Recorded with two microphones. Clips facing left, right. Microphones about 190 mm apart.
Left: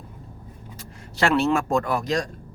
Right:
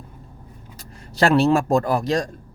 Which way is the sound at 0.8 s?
40° right (ahead or behind).